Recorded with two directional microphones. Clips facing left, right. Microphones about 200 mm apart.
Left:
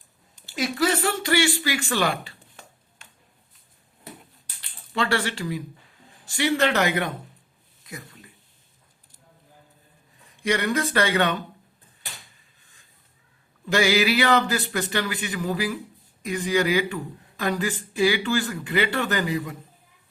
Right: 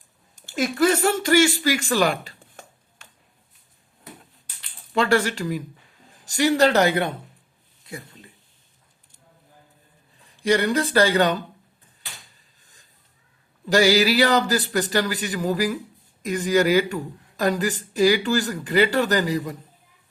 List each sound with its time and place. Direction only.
0.3 s speech: 50° right (ahead or behind)
4.9 s speech: 45° right (ahead or behind)
7.9 s a sound: 30° right (ahead or behind)
10.2 s speech: 30° right (ahead or behind)
13.7 s speech: 40° right (ahead or behind)